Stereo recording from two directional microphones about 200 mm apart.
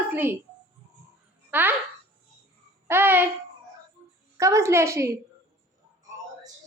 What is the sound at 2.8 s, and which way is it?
Speech, 10° right (ahead or behind).